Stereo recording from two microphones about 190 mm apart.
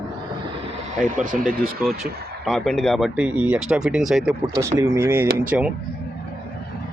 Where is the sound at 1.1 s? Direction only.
45° right (ahead or behind).